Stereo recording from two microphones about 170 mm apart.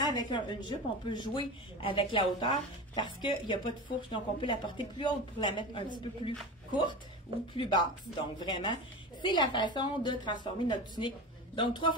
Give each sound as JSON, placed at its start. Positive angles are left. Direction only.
{"t": 0.0, "sound": "a woman's voice", "side_deg": 25}